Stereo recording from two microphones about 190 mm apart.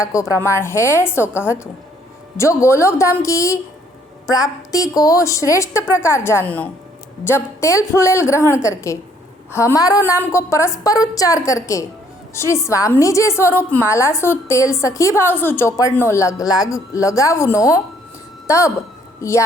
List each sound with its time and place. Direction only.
0.0 s a woman's voice: 15° left (ahead or behind)
2.4 s a woman's voice: 15° left (ahead or behind)